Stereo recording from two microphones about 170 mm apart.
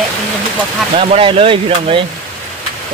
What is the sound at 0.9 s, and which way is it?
Speech, 35° right (ahead or behind).